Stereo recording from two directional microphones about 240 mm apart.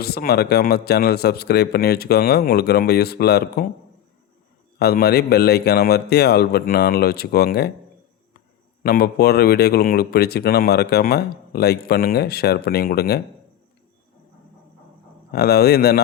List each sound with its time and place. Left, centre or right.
0.0 s a man's voice: left
4.8 s a man's voice: left
8.8 s a man's voice: left
15.3 s a man's voice: left